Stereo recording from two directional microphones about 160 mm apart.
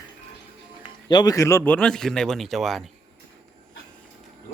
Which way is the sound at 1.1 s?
25° left (ahead or behind).